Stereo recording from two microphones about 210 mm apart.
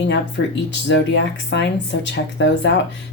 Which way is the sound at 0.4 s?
60° left (ahead or behind).